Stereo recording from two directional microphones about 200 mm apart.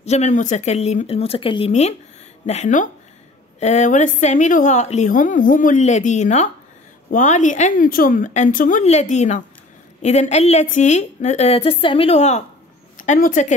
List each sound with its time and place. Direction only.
0.0 s a woman's voice: 35° left (ahead or behind)